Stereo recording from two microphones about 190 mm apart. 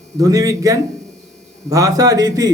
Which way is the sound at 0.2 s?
15° right (ahead or behind).